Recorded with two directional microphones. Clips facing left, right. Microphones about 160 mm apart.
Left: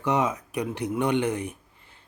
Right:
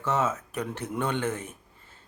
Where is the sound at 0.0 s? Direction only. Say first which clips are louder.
Left 2 dB; 15° left (ahead or behind).